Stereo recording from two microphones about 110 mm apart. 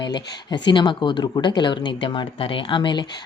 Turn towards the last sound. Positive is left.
turn(degrees=45)  # may be behind; listen again after turning